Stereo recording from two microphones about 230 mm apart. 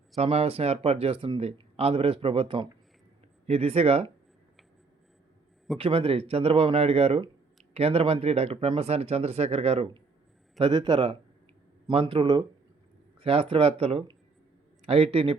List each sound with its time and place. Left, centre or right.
0.2 s speech: right
5.7 s speech: right